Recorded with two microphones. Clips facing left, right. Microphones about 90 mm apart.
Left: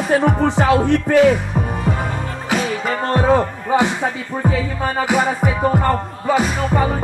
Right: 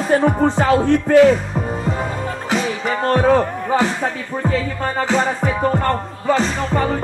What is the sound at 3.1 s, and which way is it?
Speech, 10° left (ahead or behind).